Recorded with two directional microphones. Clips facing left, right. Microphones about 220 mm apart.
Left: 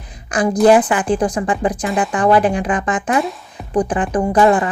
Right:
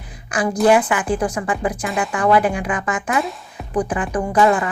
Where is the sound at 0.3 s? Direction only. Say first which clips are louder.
Left 4 dB; 35° left (ahead or behind).